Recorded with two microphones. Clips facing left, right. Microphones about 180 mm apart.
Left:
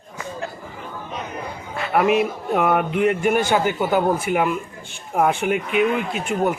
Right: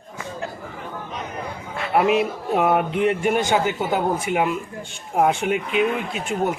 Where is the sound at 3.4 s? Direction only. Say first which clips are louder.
Left 1 dB; 15° right (ahead or behind).